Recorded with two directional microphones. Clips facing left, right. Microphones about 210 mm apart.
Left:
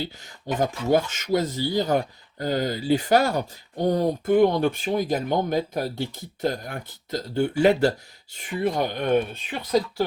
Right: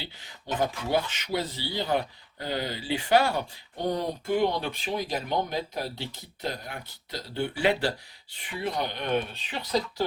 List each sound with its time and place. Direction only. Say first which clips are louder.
0.0 s speech: left 9 dB; 45° left (ahead or behind)